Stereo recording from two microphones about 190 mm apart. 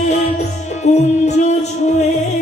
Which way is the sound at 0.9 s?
35° left (ahead or behind).